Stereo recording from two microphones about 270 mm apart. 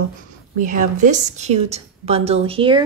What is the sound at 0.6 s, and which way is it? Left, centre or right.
A woman's voice, right.